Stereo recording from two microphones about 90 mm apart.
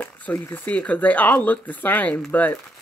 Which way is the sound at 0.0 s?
15° left (ahead or behind).